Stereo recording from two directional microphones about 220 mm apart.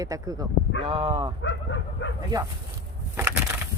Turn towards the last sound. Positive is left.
turn(degrees=-10)  # may be behind; listen again after turning